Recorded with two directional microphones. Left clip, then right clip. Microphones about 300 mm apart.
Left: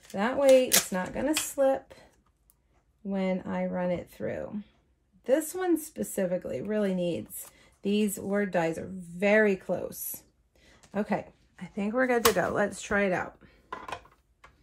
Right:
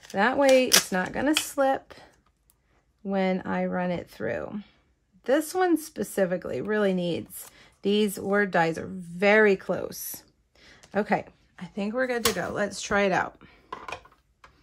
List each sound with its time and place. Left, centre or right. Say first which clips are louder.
0.1 s speech: right 1 dB; right
3.1 s speech: right 5 dB; right; by 13.0 s centre
13.0 s a woman's voice: right 4 dB; centre
13.7 s dishes: right 1 dB; centre